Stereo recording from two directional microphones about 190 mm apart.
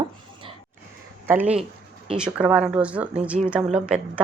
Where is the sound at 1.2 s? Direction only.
10° right (ahead or behind).